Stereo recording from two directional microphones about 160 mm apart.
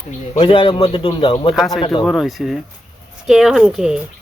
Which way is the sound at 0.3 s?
35° left (ahead or behind).